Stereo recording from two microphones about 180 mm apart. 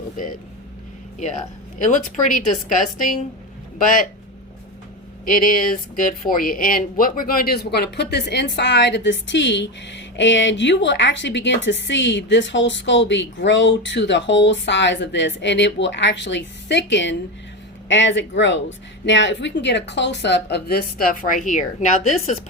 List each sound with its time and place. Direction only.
1.8 s a woman's voice: 45° left (ahead or behind)
5.2 s speech: 50° left (ahead or behind)